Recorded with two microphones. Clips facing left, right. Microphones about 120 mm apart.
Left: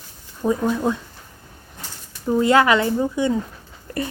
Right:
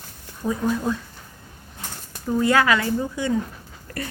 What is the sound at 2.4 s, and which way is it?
Speech, 20° left (ahead or behind).